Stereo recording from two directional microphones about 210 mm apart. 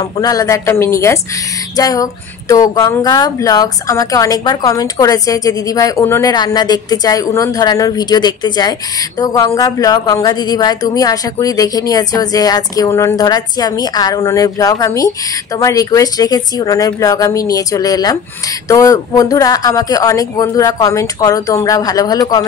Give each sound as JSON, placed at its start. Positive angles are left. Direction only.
{"t": 0.2, "sound": "speech", "side_deg": 15}